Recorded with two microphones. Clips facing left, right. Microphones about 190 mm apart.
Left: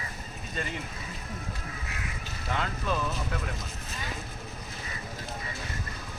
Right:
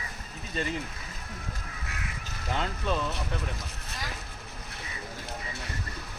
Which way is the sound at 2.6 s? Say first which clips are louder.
Right 1 dB; 30° right (ahead or behind).